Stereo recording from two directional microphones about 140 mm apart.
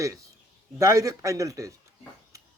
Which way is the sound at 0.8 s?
25° right (ahead or behind).